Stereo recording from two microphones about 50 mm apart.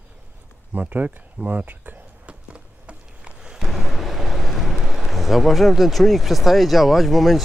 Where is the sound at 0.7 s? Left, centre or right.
Right.